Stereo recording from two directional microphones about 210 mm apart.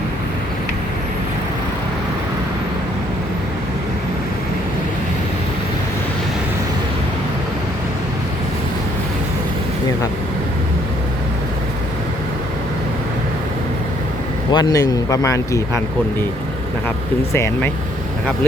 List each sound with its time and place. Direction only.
14.5 s speech: 15° left (ahead or behind)
17.3 s speech: 10° left (ahead or behind)